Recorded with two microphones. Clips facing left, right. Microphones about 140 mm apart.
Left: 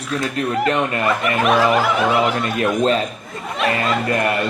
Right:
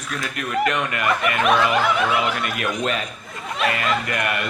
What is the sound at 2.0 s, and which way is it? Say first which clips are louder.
Speech: left 4 dB; 35° left (ahead or behind).